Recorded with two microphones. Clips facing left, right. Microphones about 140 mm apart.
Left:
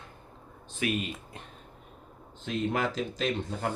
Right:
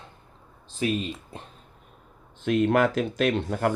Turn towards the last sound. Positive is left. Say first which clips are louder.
# right 7 dB
turn(degrees=-60)  # may be behind; listen again after turning